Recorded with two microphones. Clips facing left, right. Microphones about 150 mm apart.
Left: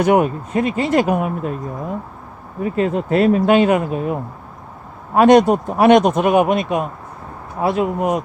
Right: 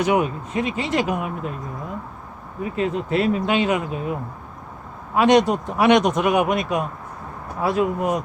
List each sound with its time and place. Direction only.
0.0 s speech: 50° left (ahead or behind)
2.7 s speech: 50° left (ahead or behind)
6.4 s speech: 25° left (ahead or behind)